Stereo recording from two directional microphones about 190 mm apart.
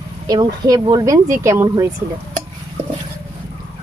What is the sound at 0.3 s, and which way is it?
Speech, 20° right (ahead or behind).